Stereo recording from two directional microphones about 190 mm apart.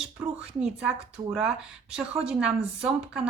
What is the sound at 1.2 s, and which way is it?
Speech, 20° right (ahead or behind).